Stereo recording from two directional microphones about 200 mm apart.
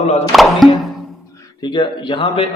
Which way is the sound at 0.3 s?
Centre (ahead or behind).